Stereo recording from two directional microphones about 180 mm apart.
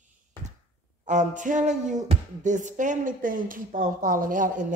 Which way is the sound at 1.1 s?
45° right (ahead or behind).